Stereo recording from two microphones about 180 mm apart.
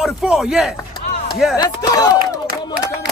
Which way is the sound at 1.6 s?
20° left (ahead or behind).